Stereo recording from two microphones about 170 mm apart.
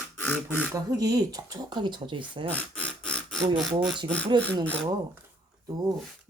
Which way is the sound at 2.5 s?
5° left (ahead or behind).